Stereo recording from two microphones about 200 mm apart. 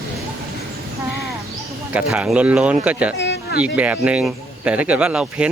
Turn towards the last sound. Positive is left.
turn(degrees=-5)  # may be behind; listen again after turning